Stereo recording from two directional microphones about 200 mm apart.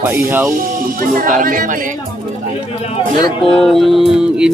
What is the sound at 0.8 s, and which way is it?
Speech, 45° right (ahead or behind).